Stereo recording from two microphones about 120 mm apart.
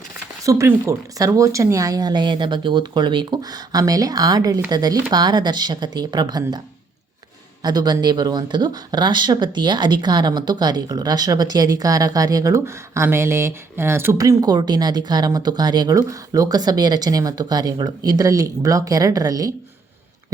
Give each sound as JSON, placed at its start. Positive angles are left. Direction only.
{"t": 0.4, "sound": "speech", "side_deg": -25}
{"t": 7.6, "sound": "speech", "side_deg": -35}